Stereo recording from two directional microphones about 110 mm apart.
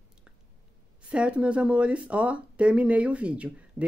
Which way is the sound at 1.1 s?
10° right (ahead or behind).